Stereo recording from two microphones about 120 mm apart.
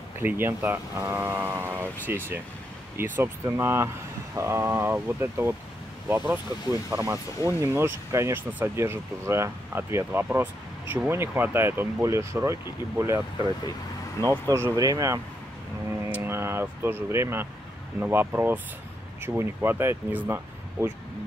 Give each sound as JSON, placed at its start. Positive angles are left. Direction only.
{"t": 0.2, "sound": "speech", "side_deg": -20}
{"t": 14.2, "sound": "speech", "side_deg": 25}
{"t": 14.5, "sound": "speech", "side_deg": -30}